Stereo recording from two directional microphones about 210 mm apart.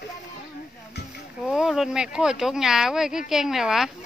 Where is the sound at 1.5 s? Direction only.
Centre (ahead or behind).